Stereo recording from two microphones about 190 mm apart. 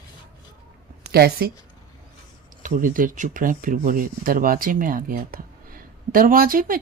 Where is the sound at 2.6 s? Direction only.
45° right (ahead or behind).